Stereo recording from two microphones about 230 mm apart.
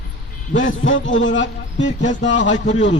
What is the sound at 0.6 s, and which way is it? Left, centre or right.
A man's voice, left.